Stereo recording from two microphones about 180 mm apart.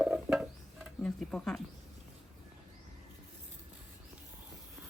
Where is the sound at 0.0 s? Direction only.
5° right (ahead or behind).